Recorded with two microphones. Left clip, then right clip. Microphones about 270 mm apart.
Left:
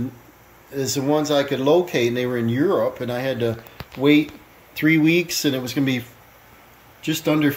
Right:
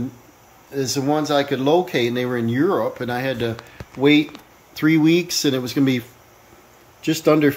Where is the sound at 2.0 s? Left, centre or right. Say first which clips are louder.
Even; right.